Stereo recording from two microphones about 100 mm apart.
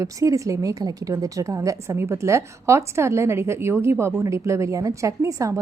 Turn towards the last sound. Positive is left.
turn(degrees=-35)  # may be behind; listen again after turning